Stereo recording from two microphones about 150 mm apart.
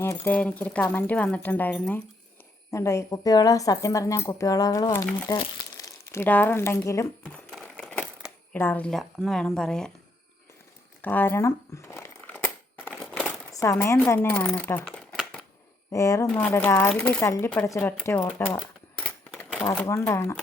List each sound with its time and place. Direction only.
0.0 s speech: 15° left (ahead or behind)
7.3 s a sound: 5° left (ahead or behind)
8.5 s speech: 10° left (ahead or behind)
11.0 s crumpling: 10° left (ahead or behind)
13.2 s speech: 20° left (ahead or behind)
15.2 s a sound: 5° left (ahead or behind)
15.9 s speech: 20° left (ahead or behind)
16.3 s speech: 10° left (ahead or behind)
18.9 s typewriter: 10° left (ahead or behind)
19.6 s speech: 20° left (ahead or behind)